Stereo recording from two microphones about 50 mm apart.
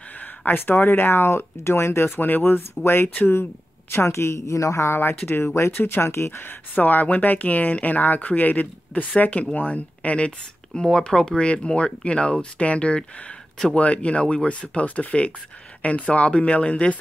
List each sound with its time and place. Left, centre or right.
0.5 s speech: left
2.1 s speech: left
3.9 s a woman's voice: left
4.9 s speech: left
5.5 s speech: left
5.8 s speech: left
6.7 s speech: left
10.7 s speech: centre